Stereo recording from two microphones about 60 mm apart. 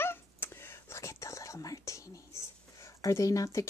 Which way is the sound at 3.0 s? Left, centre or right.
Left.